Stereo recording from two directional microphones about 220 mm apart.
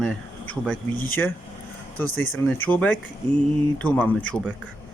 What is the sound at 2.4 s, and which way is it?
Speech, 10° left (ahead or behind).